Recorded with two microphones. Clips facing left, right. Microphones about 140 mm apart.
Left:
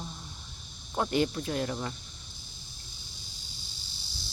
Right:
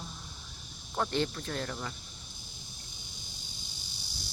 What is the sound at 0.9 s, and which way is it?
Speech, 10° left (ahead or behind).